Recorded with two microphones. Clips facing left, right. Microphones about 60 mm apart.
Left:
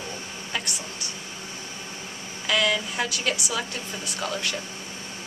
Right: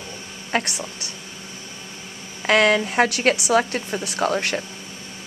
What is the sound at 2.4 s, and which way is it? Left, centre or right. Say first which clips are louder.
A woman's voice: right 7 dB; right.